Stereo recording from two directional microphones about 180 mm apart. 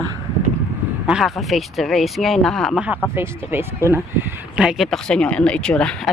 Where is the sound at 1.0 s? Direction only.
Centre (ahead or behind).